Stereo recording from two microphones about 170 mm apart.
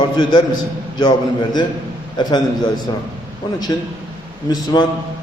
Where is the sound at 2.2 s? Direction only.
25° left (ahead or behind).